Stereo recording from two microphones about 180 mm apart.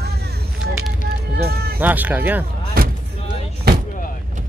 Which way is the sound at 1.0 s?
60° right (ahead or behind).